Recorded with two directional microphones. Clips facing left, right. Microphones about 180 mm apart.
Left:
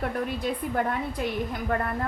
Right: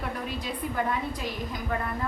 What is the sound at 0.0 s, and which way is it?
A woman's voice, 55° left (ahead or behind).